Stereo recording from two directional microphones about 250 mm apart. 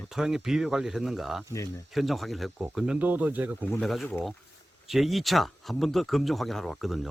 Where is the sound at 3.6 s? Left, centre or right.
Centre.